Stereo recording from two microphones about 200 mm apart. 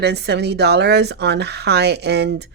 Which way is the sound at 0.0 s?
55° right (ahead or behind).